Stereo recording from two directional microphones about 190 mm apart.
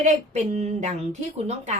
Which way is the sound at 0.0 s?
35° right (ahead or behind).